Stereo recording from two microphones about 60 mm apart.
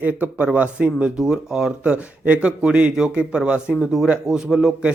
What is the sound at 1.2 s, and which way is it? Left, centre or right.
Speech, centre.